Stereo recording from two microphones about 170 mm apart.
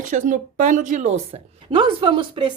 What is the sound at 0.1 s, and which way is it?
A woman's voice, 50° right (ahead or behind).